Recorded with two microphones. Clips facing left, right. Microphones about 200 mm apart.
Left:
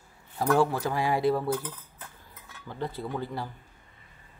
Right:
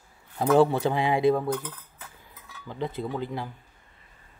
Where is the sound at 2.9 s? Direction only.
20° right (ahead or behind).